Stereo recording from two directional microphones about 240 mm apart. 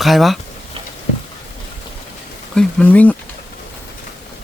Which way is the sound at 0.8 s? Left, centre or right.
Right.